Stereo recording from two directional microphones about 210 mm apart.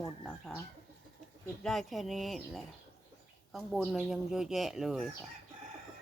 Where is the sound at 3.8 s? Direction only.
5° right (ahead or behind).